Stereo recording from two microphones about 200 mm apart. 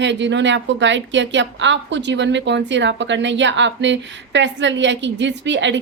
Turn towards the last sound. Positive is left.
turn(degrees=-65)  # may be behind; listen again after turning